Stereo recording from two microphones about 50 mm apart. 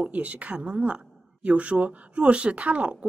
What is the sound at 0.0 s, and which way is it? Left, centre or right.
Speech, right.